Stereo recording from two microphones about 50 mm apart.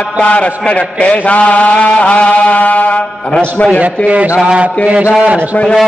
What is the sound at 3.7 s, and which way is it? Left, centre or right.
A man's voice, right.